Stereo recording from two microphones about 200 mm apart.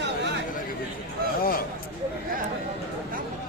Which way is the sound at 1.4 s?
45° left (ahead or behind).